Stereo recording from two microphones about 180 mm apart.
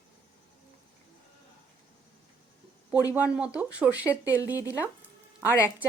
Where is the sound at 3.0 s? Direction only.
20° left (ahead or behind).